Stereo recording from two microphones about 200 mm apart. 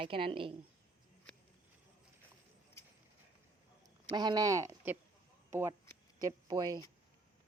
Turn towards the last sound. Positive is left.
turn(degrees=-20)  # may be behind; listen again after turning